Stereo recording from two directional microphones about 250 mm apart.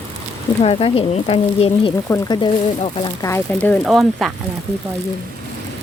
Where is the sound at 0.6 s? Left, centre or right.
Left; by 4.3 s centre.